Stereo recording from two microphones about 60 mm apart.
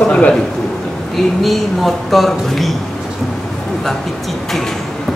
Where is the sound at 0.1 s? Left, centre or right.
Centre.